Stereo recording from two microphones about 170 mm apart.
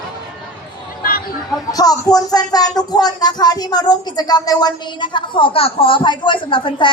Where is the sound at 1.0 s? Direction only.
60° left (ahead or behind).